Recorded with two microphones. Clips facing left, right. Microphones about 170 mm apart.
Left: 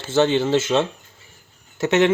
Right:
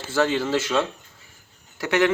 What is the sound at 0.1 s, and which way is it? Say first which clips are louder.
A man's voice: left 4 dB; 25° left (ahead or behind).